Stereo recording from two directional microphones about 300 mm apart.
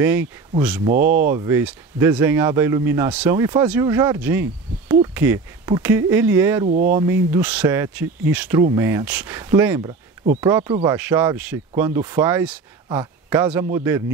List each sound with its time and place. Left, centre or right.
0.0 s speech: centre
6.7 s speech: right
7.0 s speech: centre